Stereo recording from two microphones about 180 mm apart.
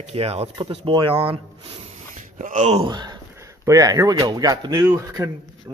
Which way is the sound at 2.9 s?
20° right (ahead or behind).